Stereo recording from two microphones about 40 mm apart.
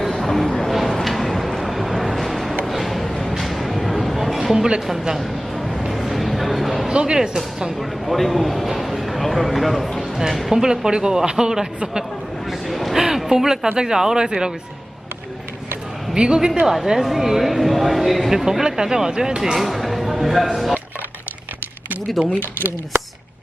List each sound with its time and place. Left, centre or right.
0.2 s music: centre
1.0 s a sound: centre
4.4 s speech: centre
5.8 s a sound: centre
6.9 s speech: centre
7.8 s a man's voice: centre
12.5 s a sound: centre
13.7 s speech: centre
16.1 s a man's voice: right
16.8 s speech: centre
19.4 s speech: centre
22.2 s a man's voice: centre